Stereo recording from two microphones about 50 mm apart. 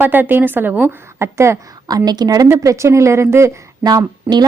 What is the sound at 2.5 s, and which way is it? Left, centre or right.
A woman's voice, right.